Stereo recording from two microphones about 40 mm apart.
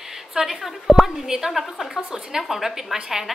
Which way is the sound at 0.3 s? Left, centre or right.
Centre.